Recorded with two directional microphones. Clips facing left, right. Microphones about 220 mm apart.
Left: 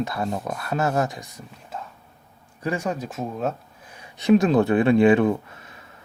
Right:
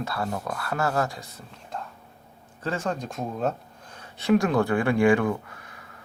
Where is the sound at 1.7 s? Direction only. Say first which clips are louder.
Even; 5° left (ahead or behind).